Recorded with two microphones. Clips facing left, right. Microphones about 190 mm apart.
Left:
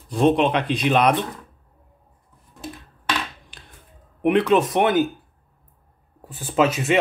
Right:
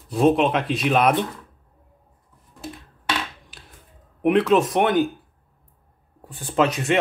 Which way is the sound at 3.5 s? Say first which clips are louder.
Even; 5° right (ahead or behind).